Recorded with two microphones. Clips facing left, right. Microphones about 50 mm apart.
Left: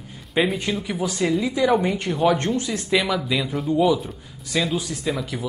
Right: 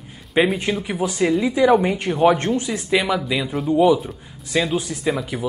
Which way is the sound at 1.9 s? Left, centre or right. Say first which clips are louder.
Right 3 dB; right.